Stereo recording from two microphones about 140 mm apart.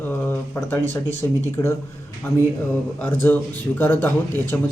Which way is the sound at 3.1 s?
15° left (ahead or behind).